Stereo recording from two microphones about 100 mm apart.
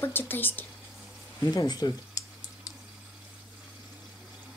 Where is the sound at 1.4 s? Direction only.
40° left (ahead or behind).